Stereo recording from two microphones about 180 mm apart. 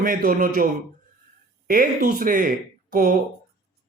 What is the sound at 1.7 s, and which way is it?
Speech, 50° right (ahead or behind).